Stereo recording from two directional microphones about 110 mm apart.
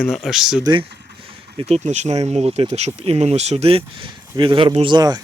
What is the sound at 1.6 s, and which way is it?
Speech, 85° right.